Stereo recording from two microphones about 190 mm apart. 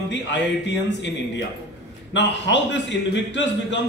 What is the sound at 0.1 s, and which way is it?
A man's voice, 65° left (ahead or behind).